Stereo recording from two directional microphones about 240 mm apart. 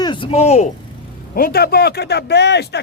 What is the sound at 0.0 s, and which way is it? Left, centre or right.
Speech, centre.